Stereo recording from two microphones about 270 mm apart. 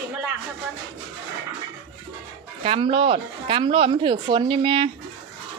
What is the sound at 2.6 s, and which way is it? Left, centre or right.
Speech, centre.